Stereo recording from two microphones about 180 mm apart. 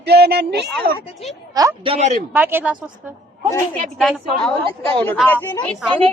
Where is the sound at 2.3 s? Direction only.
10° right (ahead or behind).